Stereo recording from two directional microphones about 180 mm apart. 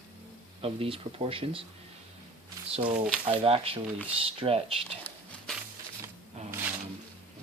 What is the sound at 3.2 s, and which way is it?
Speech, 30° right (ahead or behind).